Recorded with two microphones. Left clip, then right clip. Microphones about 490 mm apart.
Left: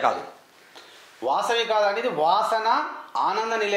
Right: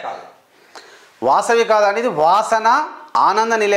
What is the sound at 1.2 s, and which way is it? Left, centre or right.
Speech, right.